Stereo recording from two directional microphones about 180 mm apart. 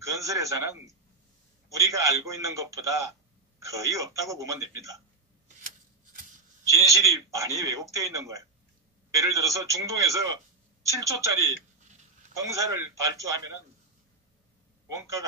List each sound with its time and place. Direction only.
0.0 s a man's voice: 20° right (ahead or behind)
6.7 s a man's voice: 20° right (ahead or behind)